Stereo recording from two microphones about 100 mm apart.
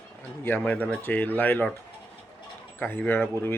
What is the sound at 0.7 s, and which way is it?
Speech, 15° left (ahead or behind).